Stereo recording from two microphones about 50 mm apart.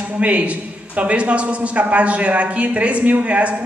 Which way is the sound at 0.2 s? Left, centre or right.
Right.